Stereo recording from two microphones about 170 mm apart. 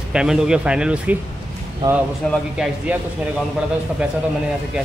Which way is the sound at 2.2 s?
5° left (ahead or behind).